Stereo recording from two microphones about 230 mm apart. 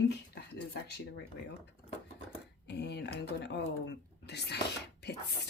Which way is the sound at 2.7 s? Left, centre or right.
Left.